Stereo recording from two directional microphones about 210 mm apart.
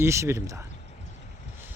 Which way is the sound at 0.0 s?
15° right (ahead or behind).